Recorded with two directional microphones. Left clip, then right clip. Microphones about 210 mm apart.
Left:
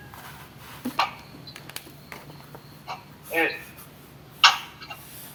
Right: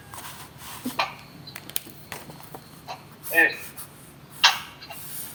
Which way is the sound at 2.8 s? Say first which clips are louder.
Left 2 dB; 15° left (ahead or behind).